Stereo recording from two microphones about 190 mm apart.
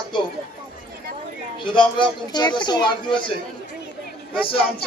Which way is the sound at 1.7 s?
25° left (ahead or behind).